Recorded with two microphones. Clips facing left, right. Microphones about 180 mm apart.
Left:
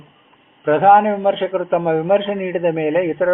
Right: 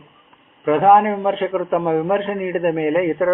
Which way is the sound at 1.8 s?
25° left (ahead or behind).